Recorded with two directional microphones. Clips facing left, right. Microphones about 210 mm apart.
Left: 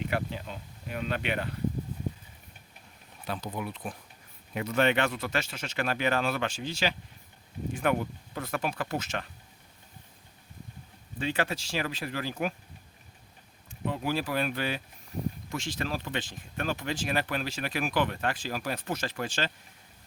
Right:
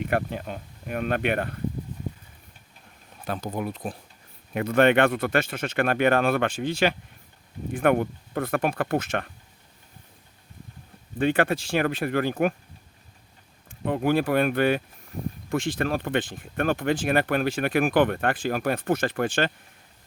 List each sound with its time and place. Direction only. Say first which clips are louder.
0.0 s speech: right 5 dB; 55° right (ahead or behind)
3.2 s speech: right 5 dB; 45° right (ahead or behind)
4.5 s speech: right 7 dB; 55° right (ahead or behind)
11.2 s speech: right 8 dB; 55° right (ahead or behind)
13.7 s speech: right 7 dB; 55° right (ahead or behind)